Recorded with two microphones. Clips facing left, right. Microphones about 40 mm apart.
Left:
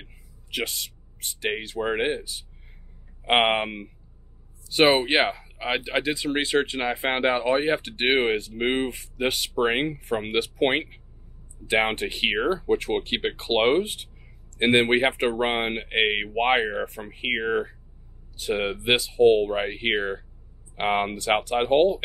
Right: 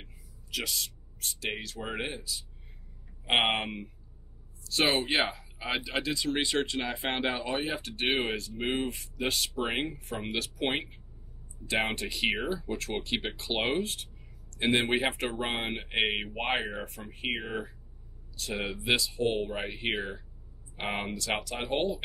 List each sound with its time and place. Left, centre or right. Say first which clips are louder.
0.0 s a sound: left 4 dB; left
1.5 s speech: left 12 dB; left
4.6 s speech: left 8 dB; left
7.7 s speech: left 7 dB; left
8.1 s speech: left 9 dB; left
10.4 s speech: left 8 dB; left
20.9 s speech: left 9 dB; left